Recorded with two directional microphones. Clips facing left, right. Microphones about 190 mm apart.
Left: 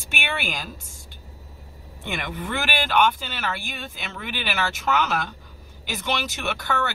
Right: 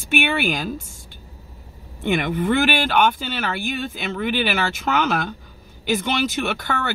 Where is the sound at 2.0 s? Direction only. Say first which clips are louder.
Right 10 dB; 55° right (ahead or behind).